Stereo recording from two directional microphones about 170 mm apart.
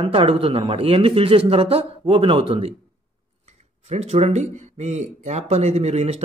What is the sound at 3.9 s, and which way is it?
Speech, 40° right (ahead or behind).